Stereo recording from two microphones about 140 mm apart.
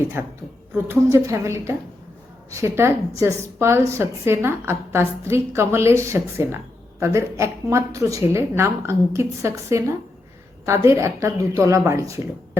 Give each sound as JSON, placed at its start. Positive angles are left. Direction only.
{"t": 0.0, "sound": "a woman's voice", "side_deg": -15}